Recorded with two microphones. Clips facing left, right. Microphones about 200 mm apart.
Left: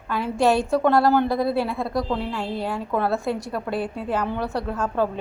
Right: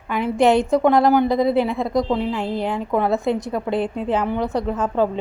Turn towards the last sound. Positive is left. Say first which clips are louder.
# right 4 dB
turn(degrees=-20)  # may be behind; listen again after turning